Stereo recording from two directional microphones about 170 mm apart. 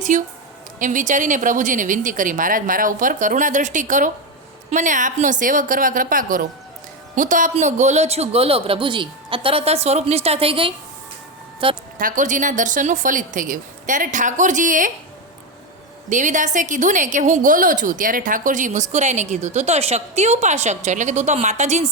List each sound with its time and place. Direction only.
0.1 s a woman's voice: 50° right (ahead or behind); by 11.8 s 30° right (ahead or behind)
11.9 s a woman's voice: 50° right (ahead or behind)
16.0 s a woman's voice: 45° right (ahead or behind)